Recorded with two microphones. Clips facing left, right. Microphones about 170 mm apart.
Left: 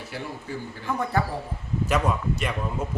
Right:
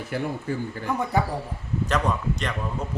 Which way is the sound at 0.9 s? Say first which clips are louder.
Right 1 dB; 15° right (ahead or behind).